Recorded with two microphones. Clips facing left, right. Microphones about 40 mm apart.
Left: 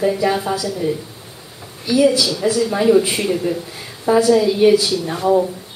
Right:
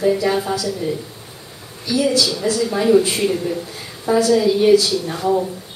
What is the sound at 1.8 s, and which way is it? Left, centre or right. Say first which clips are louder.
Speech: left 3 dB; centre.